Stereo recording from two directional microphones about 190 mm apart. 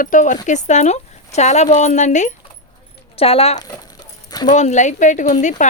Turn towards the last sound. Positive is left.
turn(degrees=40)  # may be behind; listen again after turning